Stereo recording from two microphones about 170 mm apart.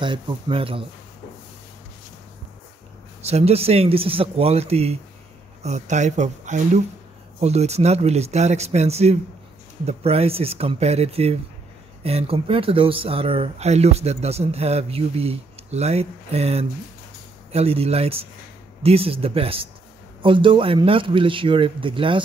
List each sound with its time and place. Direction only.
0.0 s speech: 30° right (ahead or behind)
3.2 s speech: 40° right (ahead or behind)